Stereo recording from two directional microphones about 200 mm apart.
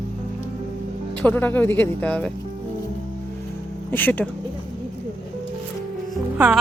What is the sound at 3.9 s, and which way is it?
Speech, 10° left (ahead or behind).